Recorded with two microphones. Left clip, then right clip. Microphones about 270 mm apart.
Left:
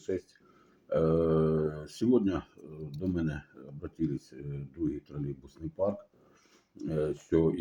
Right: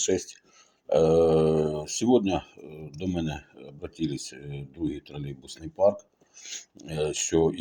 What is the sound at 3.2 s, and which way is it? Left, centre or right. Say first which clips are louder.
Speech: right 3 dB; centre.